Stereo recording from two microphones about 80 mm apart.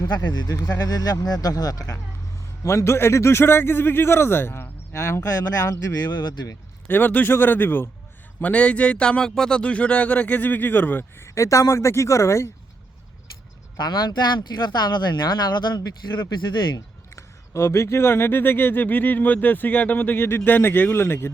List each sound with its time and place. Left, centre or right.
0.0 s speech: left
2.6 s a man's voice: left
6.0 s speech: left
6.8 s speech: left
11.3 s a man's voice: left
13.7 s speech: left
16.7 s speech: left